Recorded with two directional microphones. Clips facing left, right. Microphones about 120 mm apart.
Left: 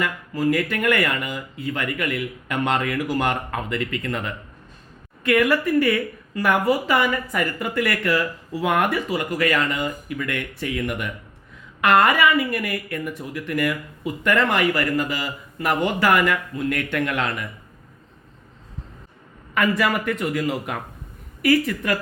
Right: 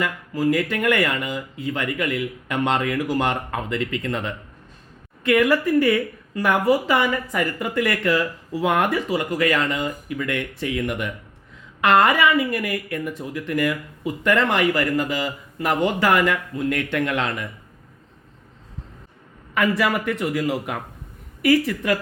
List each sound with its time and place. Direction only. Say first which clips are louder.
0.0 s speech: right 1 dB; 20° right (ahead or behind)
19.5 s a man's voice: even; 15° right (ahead or behind)